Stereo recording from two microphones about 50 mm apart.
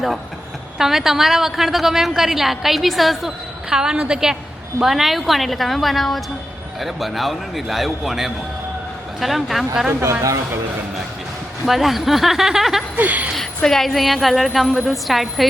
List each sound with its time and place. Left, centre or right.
0.8 s a woman's voice: centre
3.7 s a woman's voice: centre
11.6 s a woman's voice: centre
13.0 s speech: right
13.7 s a woman's voice: centre